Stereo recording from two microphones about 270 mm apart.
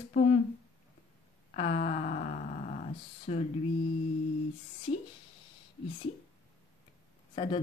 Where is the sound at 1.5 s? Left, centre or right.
Left.